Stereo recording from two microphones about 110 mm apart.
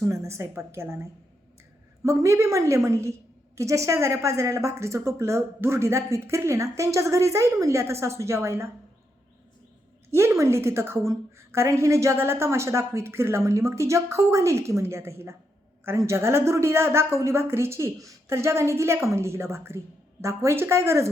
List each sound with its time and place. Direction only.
0.0 s a woman's voice: 25° right (ahead or behind)
2.0 s a woman's voice: 25° right (ahead or behind)
10.1 s a woman's voice: 25° right (ahead or behind)